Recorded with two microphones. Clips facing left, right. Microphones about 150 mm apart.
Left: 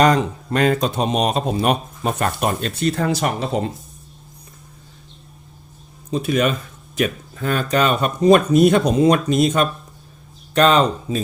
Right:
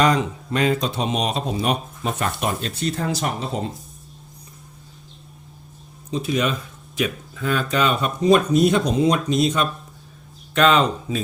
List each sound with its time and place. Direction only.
0.5 s speech: 50° left (ahead or behind); by 3.7 s 70° left (ahead or behind)
6.1 s speech: 55° left (ahead or behind)
10.5 s speech: 40° left (ahead or behind)